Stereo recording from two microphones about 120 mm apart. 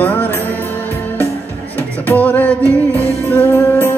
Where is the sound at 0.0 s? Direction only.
15° left (ahead or behind).